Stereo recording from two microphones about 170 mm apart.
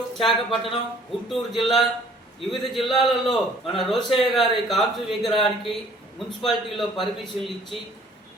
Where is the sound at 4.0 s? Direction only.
30° left (ahead or behind).